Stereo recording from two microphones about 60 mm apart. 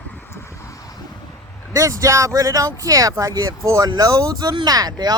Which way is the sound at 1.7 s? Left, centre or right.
Right.